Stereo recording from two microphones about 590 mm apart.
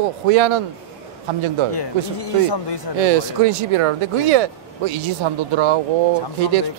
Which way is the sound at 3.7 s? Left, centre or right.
Right.